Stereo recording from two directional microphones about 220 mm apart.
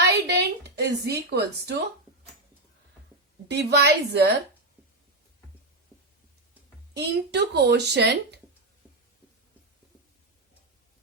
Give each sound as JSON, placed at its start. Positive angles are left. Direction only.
{"t": 0.0, "sound": "a sound", "side_deg": -50}
{"t": 3.5, "sound": "speech", "side_deg": -50}
{"t": 6.9, "sound": "speech", "side_deg": -50}